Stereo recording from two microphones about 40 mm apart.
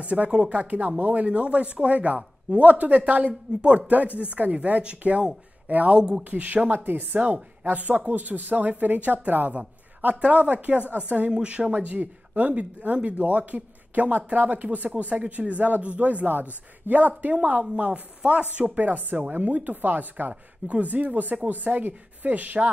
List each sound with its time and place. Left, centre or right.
0.0 s speech: right
11.7 s speech: right
14.1 s speech: right
16.8 s a man's voice: right